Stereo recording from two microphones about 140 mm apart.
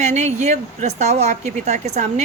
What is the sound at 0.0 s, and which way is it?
A woman's voice, 55° right (ahead or behind).